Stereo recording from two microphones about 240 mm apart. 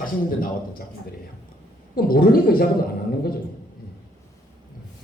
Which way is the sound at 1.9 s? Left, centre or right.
Left.